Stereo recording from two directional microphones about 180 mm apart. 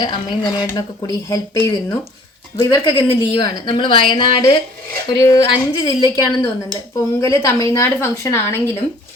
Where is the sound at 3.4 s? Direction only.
25° left (ahead or behind).